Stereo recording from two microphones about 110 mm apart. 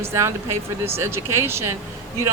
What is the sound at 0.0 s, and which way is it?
Speech, 25° right (ahead or behind).